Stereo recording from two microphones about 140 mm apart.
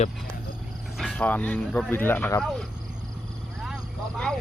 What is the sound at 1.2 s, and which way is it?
Speech, 10° left (ahead or behind).